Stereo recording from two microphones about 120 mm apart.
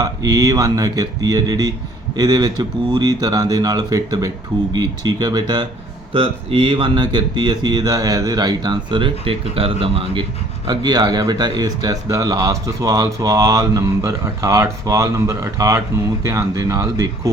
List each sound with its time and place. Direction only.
0.0 s speech: 30° right (ahead or behind)
6.1 s speech: 45° right (ahead or behind)
10.7 s speech: 35° right (ahead or behind)